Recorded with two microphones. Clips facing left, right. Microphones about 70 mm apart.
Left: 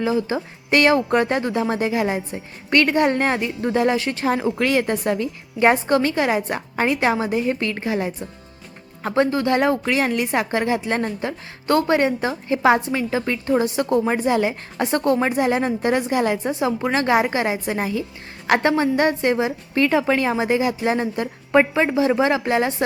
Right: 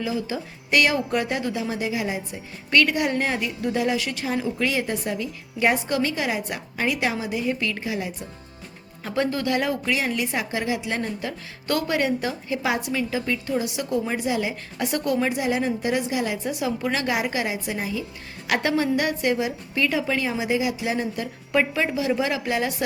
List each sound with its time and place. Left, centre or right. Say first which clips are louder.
0.0 s a woman's voice: left 6 dB; left
4.3 s a woman's voice: left 5 dB; left
9.0 s a woman's voice: left 5 dB; left
14.8 s a woman's voice: left 5 dB; left
16.5 s a woman's voice: left 4 dB; left